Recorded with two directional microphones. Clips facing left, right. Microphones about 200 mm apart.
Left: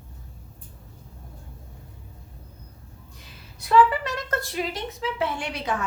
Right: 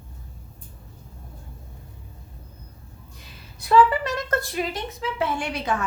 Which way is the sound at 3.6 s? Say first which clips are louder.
Right 1 dB; 45° right (ahead or behind).